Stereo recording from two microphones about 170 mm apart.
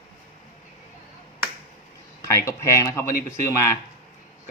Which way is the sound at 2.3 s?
15° left (ahead or behind).